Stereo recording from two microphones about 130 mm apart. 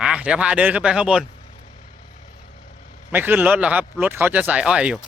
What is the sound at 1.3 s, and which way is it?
Vehicle, 45° left (ahead or behind).